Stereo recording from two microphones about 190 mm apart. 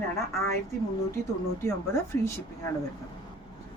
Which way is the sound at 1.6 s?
15° left (ahead or behind).